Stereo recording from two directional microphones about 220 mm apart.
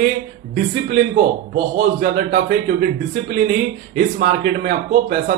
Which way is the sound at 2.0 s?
40° right (ahead or behind).